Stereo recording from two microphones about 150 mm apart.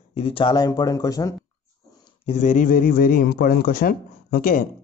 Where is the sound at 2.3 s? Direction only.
55° left (ahead or behind); by 4.6 s 75° left (ahead or behind).